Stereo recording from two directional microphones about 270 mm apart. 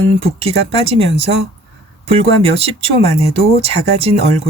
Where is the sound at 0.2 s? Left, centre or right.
Right.